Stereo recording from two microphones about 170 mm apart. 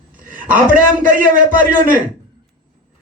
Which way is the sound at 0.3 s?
50° right (ahead or behind).